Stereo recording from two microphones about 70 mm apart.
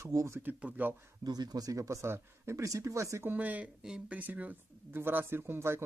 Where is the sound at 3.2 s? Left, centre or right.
Right.